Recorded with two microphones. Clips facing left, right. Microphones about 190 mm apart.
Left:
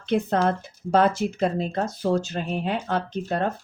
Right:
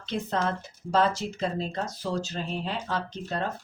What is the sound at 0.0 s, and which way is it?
A woman's voice, 55° left (ahead or behind).